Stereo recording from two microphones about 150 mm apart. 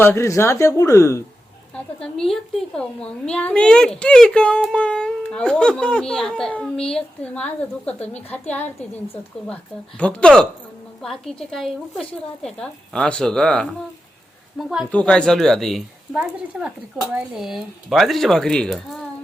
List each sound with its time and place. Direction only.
0.0 s speech: 15° left (ahead or behind)
1.7 s a child's voice: 5° left (ahead or behind)
10.0 s a child's voice: 10° left (ahead or behind)
14.8 s speech: 5° left (ahead or behind)